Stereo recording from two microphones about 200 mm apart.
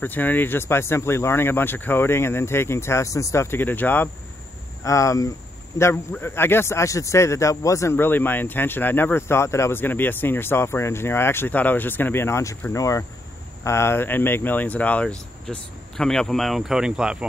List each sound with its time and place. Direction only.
0.0 s a man's voice: 10° left (ahead or behind)